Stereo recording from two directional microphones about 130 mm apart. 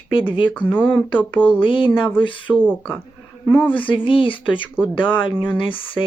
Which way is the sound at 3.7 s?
40° left (ahead or behind).